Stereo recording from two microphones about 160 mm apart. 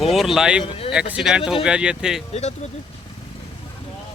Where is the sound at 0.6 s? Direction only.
35° left (ahead or behind).